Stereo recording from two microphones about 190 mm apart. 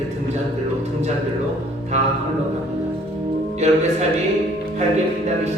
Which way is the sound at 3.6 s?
35° right (ahead or behind).